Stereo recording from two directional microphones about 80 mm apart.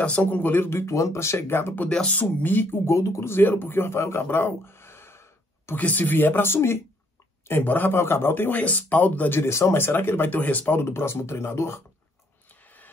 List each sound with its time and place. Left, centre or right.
0.0 s speech: centre
1.9 s speech: centre
2.4 s speech: left
3.0 s speech: left
5.8 s speech: left
10.8 s speech: left
12.6 s a sound: left